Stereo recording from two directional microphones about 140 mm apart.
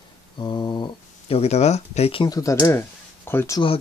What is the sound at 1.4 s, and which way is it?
Speech, 50° left (ahead or behind).